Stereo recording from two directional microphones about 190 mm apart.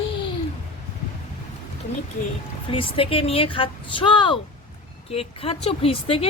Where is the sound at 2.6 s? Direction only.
30° left (ahead or behind).